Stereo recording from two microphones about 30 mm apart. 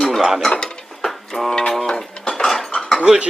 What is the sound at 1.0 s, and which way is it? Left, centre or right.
Music, centre.